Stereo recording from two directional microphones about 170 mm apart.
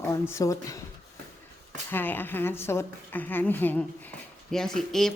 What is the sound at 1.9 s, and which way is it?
A woman's voice, 10° left (ahead or behind).